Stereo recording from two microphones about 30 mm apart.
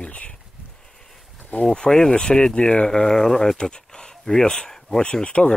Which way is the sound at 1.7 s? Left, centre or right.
Left.